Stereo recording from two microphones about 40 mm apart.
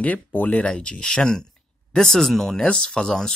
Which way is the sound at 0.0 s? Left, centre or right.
Left.